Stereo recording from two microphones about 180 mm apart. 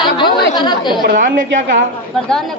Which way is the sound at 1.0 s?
50° right (ahead or behind).